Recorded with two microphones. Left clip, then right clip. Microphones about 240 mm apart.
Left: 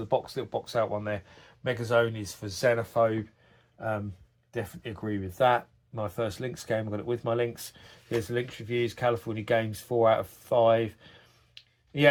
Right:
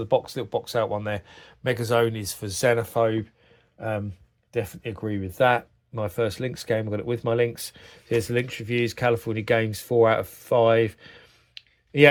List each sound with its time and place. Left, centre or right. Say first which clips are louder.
0.0 s speech: right 5 dB; right